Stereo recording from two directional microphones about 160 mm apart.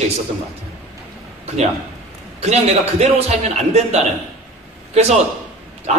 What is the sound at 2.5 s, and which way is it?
Speech, 40° right (ahead or behind).